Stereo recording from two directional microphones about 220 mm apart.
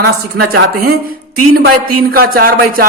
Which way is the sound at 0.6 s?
45° right (ahead or behind).